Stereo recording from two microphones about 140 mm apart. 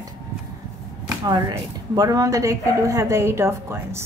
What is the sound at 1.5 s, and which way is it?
A woman's voice, 25° right (ahead or behind).